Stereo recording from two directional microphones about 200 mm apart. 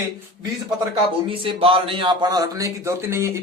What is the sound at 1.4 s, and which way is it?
Speech, 25° right (ahead or behind).